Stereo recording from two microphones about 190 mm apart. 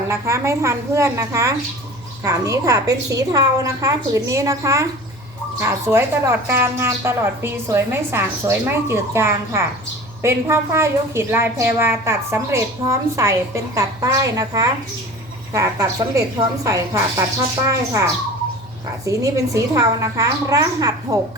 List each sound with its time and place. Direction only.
0.1 s speech: 15° right (ahead or behind)